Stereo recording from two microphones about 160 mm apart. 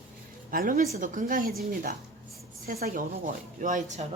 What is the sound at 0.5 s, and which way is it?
A woman's voice, 65° right (ahead or behind).